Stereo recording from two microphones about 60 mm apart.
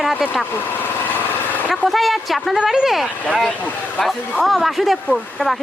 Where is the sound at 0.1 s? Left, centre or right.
Centre.